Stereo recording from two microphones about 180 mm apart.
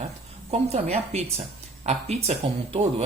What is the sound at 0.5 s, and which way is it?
Speech, 35° right (ahead or behind).